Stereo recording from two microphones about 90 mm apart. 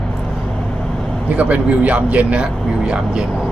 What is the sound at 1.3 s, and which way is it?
A man's voice, 15° right (ahead or behind).